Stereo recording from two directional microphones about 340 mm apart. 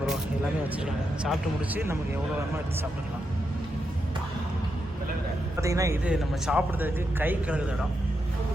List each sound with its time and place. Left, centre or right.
0.9 s a man's voice: centre
5.5 s a man's voice: centre